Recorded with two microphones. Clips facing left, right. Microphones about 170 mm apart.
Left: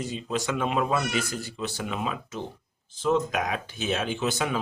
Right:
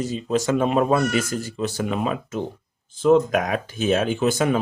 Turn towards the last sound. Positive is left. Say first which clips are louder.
# right 7 dB
turn(degrees=-50)  # may be behind; listen again after turning